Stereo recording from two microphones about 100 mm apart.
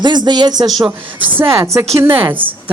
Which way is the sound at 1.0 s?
55° right (ahead or behind).